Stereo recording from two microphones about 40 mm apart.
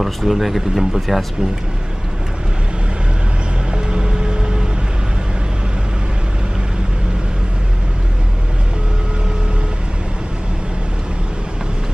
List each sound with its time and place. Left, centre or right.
0.0 s speech: centre
3.7 s vehicle: right